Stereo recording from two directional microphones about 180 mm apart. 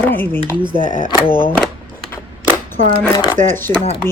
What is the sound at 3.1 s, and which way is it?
Speech, 20° left (ahead or behind).